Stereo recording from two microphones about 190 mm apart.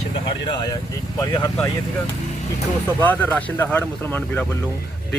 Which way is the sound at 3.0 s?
10° left (ahead or behind).